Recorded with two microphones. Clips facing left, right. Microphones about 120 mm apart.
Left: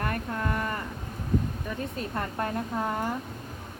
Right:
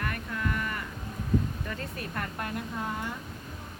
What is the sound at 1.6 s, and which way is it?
Speech, 15° left (ahead or behind).